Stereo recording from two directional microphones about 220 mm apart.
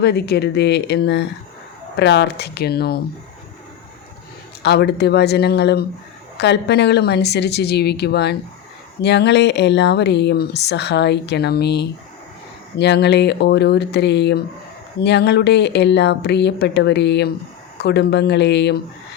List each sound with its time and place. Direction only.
0.0 s speech: 45° left (ahead or behind)
4.6 s speech: 50° left (ahead or behind)